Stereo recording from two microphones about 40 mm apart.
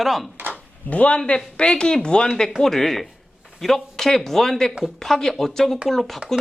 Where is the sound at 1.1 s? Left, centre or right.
Left.